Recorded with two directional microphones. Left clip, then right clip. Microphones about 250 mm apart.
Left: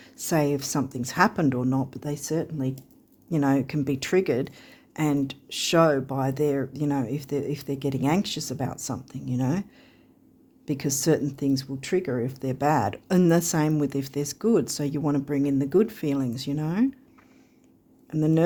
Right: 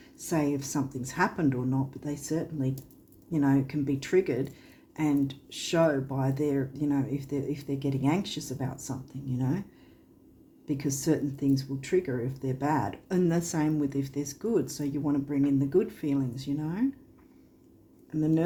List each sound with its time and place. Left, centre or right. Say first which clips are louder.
0.0 s speech: left 5 dB; left
10.7 s speech: left 5 dB; left
18.1 s speech: left 4 dB; left